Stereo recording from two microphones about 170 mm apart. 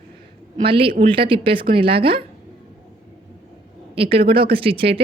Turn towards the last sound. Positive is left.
turn(degrees=-35)  # may be behind; listen again after turning